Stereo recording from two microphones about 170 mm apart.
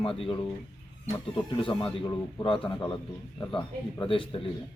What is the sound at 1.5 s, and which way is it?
A man's voice, 30° left (ahead or behind).